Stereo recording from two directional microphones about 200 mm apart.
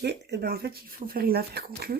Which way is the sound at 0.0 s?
55° right (ahead or behind).